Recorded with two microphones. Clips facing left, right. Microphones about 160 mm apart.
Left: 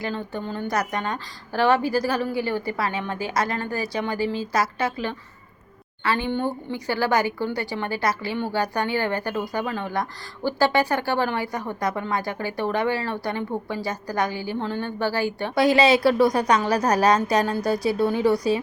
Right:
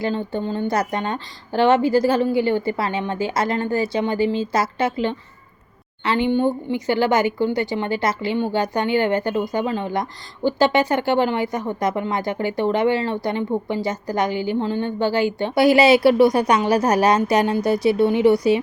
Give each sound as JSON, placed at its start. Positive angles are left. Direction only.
{"t": 0.0, "sound": "speech", "side_deg": -25}